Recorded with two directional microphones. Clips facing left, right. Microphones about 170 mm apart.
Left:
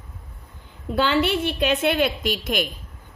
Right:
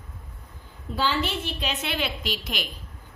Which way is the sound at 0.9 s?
70° left (ahead or behind).